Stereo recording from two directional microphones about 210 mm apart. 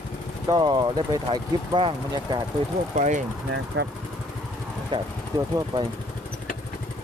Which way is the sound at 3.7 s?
60° right (ahead or behind).